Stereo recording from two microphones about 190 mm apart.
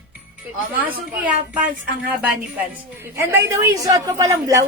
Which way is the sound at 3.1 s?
15° right (ahead or behind).